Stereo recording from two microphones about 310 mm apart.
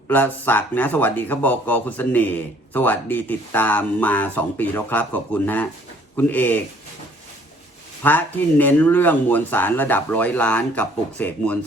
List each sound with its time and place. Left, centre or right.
0.1 s speech: centre
8.0 s speech: centre